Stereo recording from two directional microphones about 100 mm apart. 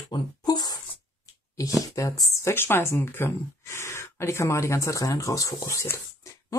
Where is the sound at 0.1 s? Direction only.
40° left (ahead or behind).